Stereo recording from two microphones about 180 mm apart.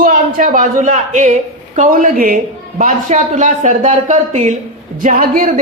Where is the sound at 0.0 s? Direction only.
50° right (ahead or behind).